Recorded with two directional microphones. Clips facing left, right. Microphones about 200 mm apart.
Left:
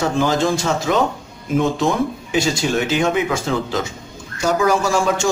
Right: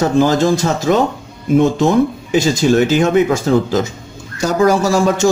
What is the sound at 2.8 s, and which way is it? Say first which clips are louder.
A man's voice: right 6 dB; 40° right (ahead or behind).